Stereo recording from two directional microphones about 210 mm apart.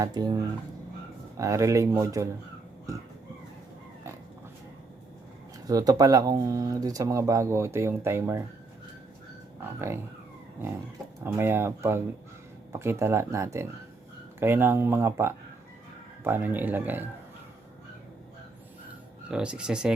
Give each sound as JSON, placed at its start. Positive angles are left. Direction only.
{"t": 0.0, "sound": "speech", "side_deg": -20}
{"t": 1.4, "sound": "speech", "side_deg": -15}
{"t": 5.6, "sound": "speech", "side_deg": -15}
{"t": 9.7, "sound": "speech", "side_deg": -10}
{"t": 11.2, "sound": "speech", "side_deg": -10}
{"t": 19.3, "sound": "speech", "side_deg": -5}